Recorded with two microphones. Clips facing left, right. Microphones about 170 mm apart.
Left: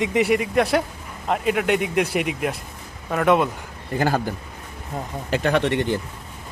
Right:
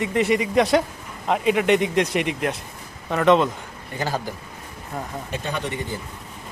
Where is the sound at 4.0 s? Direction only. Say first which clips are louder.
Left 5 dB; 55° left (ahead or behind).